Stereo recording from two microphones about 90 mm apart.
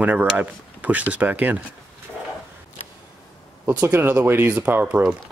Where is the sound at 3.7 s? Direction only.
20° right (ahead or behind).